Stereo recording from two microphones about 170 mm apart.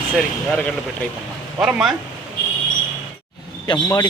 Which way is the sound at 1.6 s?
5° right (ahead or behind).